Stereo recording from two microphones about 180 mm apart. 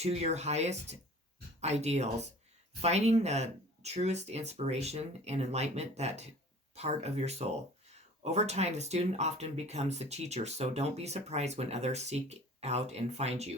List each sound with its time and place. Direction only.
0.0 s speech: 35° right (ahead or behind)